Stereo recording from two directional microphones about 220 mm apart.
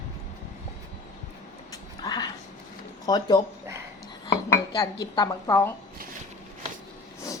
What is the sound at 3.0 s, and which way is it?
Speech, 15° left (ahead or behind).